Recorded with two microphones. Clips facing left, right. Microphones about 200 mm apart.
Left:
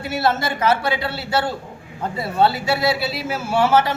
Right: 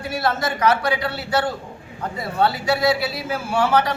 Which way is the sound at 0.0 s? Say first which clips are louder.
Left 2 dB; 25° left (ahead or behind).